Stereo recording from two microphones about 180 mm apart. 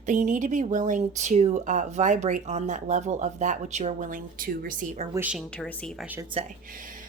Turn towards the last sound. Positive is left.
turn(degrees=-30)  # may be behind; listen again after turning